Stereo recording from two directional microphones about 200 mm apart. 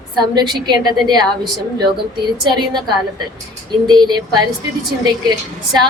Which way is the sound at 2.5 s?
20° right (ahead or behind).